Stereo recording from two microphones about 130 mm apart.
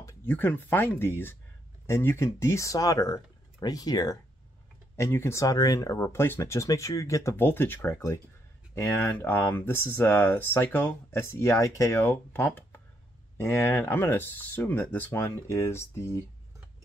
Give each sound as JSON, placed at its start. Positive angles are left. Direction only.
{"t": 0.0, "sound": "speech", "side_deg": 15}